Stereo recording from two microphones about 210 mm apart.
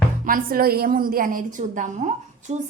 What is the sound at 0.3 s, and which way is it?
A woman's voice, 40° right (ahead or behind).